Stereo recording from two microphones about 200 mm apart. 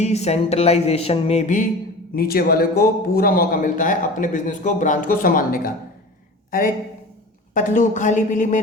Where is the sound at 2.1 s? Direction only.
50° left (ahead or behind).